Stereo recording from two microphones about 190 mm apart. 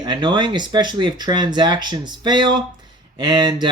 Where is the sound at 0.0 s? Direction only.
25° right (ahead or behind).